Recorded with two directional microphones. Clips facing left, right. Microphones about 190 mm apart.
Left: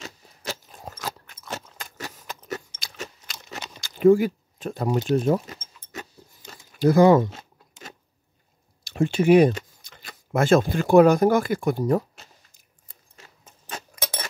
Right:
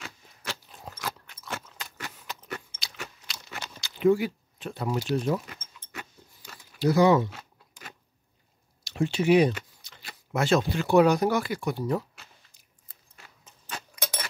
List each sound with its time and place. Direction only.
0.0 s a sound: 40° left (ahead or behind)
2.8 s crunch: 45° left (ahead or behind)
3.8 s speech: 45° left (ahead or behind)
5.1 s keys jangling: 45° left (ahead or behind)
6.6 s speech: 50° left (ahead or behind)
8.8 s speech: 50° left (ahead or behind)
13.1 s keys jangling: 40° left (ahead or behind)